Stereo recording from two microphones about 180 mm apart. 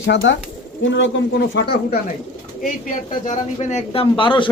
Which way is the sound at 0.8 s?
90° left.